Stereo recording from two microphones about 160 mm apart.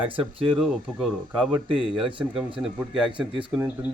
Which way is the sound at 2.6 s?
5° right (ahead or behind).